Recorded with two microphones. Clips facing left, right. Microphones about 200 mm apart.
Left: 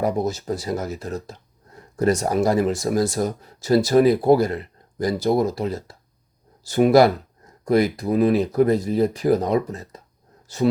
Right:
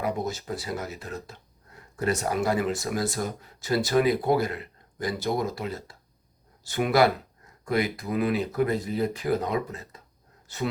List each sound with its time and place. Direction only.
0.0 s speech: 40° left (ahead or behind)